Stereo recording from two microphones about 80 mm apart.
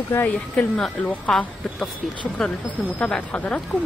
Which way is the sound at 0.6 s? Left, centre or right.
Centre.